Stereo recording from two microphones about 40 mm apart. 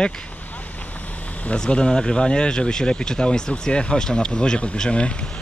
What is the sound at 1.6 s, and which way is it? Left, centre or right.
Speech, left.